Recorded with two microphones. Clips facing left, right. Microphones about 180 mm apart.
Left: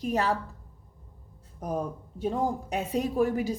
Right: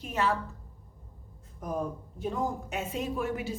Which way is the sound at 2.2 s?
35° left (ahead or behind).